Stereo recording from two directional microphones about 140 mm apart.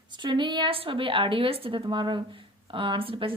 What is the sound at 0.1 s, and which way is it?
A woman's voice, 35° right (ahead or behind).